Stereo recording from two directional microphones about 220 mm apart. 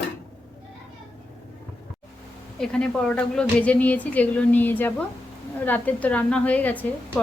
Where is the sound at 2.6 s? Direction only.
5° left (ahead or behind).